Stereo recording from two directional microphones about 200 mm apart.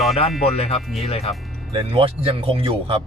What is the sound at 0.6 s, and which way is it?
Speech, 30° left (ahead or behind).